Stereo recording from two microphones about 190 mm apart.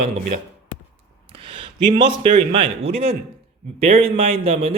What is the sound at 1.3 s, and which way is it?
A man's voice, 30° right (ahead or behind).